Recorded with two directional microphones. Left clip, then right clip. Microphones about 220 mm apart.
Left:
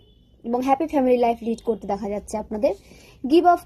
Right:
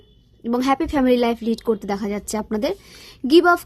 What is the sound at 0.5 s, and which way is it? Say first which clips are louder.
Speech: right 1 dB; 35° right (ahead or behind).